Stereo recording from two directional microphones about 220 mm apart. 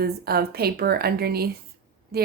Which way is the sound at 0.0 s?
45° right (ahead or behind).